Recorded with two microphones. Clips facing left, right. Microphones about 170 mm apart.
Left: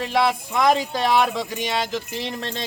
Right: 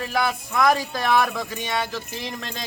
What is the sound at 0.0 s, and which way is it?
Speech, 25° left (ahead or behind).